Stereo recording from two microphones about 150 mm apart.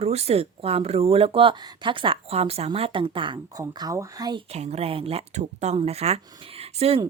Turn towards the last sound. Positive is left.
turn(degrees=-40)  # may be behind; listen again after turning